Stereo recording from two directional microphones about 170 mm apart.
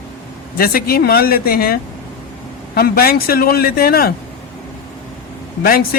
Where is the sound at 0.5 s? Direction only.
60° left (ahead or behind).